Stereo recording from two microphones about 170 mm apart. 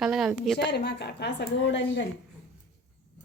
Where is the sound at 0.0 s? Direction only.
5° right (ahead or behind).